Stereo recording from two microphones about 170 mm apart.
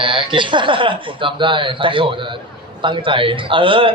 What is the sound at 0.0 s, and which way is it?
Speech, 30° right (ahead or behind).